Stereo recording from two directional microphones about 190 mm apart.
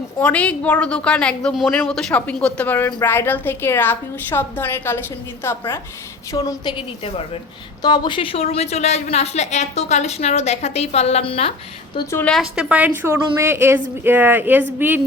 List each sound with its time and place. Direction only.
0.2 s a woman's voice: 5° left (ahead or behind); by 11.5 s 30° left (ahead or behind)
12.1 s a woman's voice: 5° left (ahead or behind)